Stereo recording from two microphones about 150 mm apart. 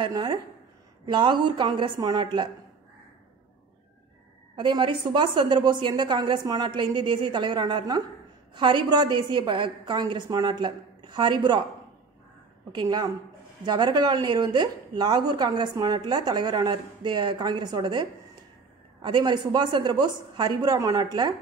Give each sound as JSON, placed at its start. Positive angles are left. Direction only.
{"t": 0.0, "sound": "a woman's voice", "side_deg": -30}
{"t": 4.6, "sound": "a woman's voice", "side_deg": -30}
{"t": 12.7, "sound": "a woman's voice", "side_deg": -25}